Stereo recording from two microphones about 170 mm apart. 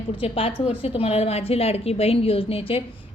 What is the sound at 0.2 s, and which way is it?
A woman's voice, 35° left (ahead or behind).